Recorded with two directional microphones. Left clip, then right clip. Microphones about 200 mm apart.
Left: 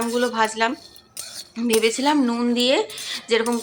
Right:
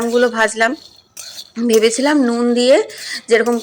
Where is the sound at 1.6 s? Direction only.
20° right (ahead or behind).